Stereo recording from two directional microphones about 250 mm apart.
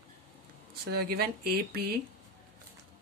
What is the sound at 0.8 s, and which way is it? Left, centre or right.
Speech, right.